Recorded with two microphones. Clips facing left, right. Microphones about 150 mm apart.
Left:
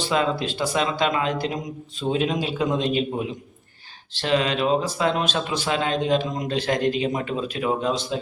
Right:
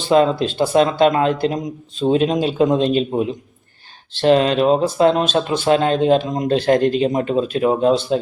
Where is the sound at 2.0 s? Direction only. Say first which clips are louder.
Right 7 dB; 35° right (ahead or behind).